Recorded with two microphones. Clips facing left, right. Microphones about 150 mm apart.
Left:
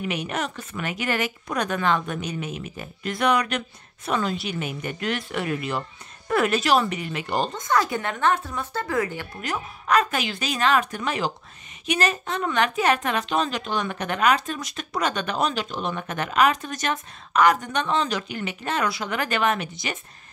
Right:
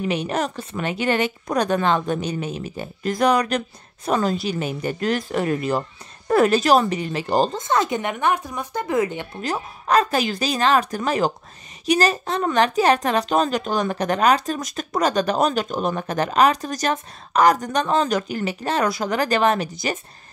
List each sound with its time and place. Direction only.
0.0 s a woman's voice: 30° right (ahead or behind)
9.4 s a woman's voice: 35° right (ahead or behind)